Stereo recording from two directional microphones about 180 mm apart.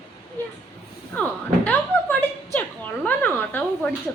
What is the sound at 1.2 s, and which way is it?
A woman's voice, 10° left (ahead or behind).